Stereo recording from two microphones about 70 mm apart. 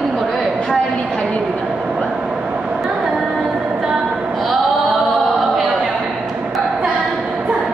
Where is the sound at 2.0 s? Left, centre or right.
Centre.